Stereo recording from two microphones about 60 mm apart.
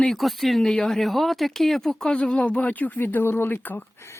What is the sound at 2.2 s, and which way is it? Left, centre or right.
Speech, centre.